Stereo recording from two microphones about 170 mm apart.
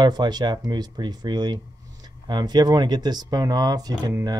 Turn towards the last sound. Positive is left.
turn(degrees=-20)  # may be behind; listen again after turning